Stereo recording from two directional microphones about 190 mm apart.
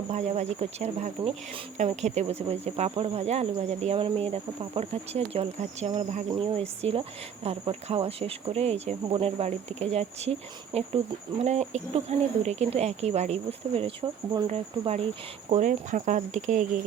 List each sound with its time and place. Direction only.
0.1 s speech: 35° right (ahead or behind)